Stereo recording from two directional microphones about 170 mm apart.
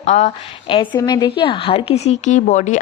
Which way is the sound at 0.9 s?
25° left (ahead or behind).